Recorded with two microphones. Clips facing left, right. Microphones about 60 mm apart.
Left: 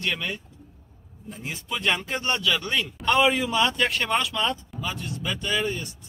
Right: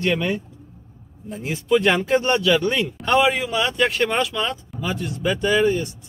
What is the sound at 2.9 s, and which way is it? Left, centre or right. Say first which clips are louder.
Speech: right 1 dB; centre.